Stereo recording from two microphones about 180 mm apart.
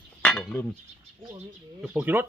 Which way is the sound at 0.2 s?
5° left (ahead or behind).